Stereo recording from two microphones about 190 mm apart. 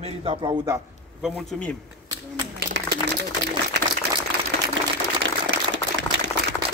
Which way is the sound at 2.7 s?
65° right (ahead or behind).